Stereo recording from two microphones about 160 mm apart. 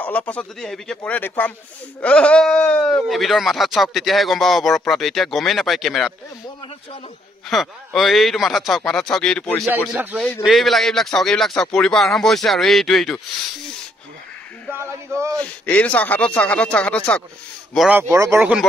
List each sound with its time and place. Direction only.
0.0 s speech: 10° left (ahead or behind)
7.4 s speech: centre (ahead or behind)
14.8 s a sound: 15° right (ahead or behind)
15.3 s speech: 10° left (ahead or behind)
17.7 s speech: 10° right (ahead or behind)